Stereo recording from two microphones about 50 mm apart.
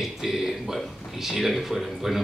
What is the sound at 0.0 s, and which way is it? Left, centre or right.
A man's voice, centre.